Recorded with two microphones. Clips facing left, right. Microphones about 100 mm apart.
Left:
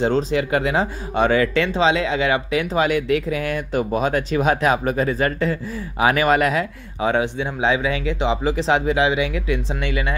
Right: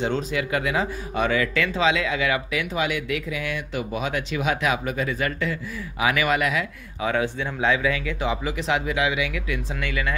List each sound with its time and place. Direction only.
0.0 s speech: 35° left (ahead or behind)